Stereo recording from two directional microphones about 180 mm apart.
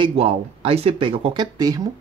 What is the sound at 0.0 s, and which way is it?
Speech, 30° right (ahead or behind).